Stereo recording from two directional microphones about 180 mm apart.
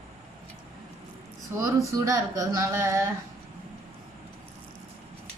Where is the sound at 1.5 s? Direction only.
15° right (ahead or behind).